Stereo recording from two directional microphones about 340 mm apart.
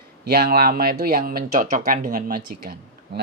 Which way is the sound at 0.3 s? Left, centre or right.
Right.